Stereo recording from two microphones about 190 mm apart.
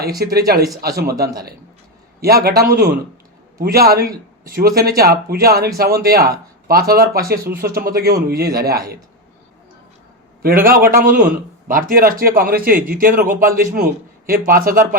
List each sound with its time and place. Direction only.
0.2 s speech: 55° right (ahead or behind)
2.2 s speech: 55° right (ahead or behind)
10.4 s speech: 50° right (ahead or behind)